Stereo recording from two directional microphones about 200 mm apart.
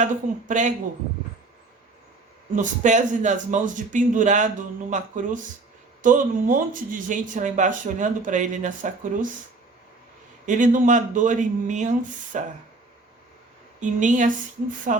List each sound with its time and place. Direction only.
0.0 s speech: 40° right (ahead or behind)
2.6 s speech: 40° right (ahead or behind)
10.4 s speech: 40° right (ahead or behind)
13.7 s speech: 40° right (ahead or behind)